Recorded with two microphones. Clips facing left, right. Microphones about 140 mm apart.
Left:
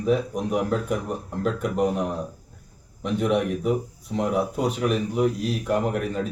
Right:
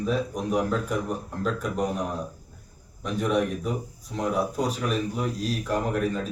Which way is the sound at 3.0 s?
25° left (ahead or behind).